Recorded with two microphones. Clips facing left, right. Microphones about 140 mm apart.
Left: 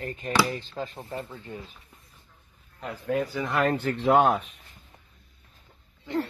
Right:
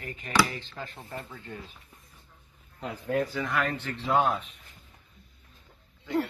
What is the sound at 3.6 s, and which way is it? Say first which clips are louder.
Speech: left 7 dB; 50° left (ahead or behind).